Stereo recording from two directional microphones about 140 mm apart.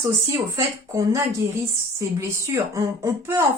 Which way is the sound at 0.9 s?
20° right (ahead or behind).